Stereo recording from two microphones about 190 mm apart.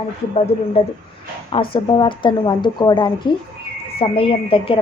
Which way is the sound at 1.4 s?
25° left (ahead or behind).